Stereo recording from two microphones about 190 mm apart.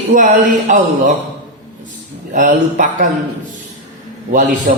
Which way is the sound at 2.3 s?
45° right (ahead or behind).